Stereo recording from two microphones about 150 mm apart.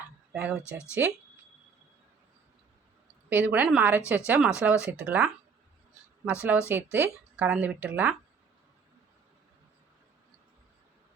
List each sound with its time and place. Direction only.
0.3 s speech: 10° right (ahead or behind)
3.2 s speech: 10° right (ahead or behind)
6.2 s speech: 10° right (ahead or behind)